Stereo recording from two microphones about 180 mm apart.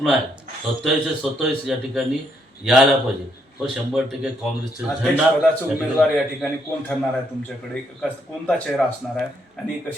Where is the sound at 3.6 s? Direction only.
5° right (ahead or behind).